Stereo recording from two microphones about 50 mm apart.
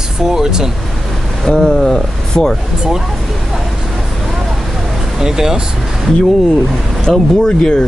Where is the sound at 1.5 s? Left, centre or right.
Centre.